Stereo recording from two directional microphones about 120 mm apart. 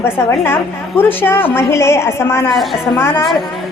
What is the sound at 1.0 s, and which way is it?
A woman's voice, 20° left (ahead or behind).